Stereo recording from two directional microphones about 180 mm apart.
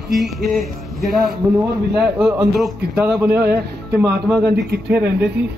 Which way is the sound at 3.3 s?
65° right (ahead or behind).